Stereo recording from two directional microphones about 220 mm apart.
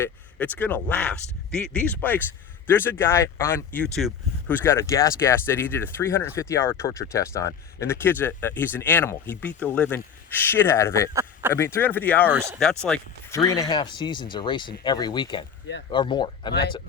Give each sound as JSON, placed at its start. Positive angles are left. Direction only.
{"t": 0.0, "sound": "speech", "side_deg": 5}
{"t": 11.1, "sound": "a sound", "side_deg": -15}
{"t": 11.5, "sound": "speech", "side_deg": 10}
{"t": 12.2, "sound": "speech", "side_deg": -10}
{"t": 12.8, "sound": "speech", "side_deg": 5}
{"t": 13.4, "sound": "speech", "side_deg": 15}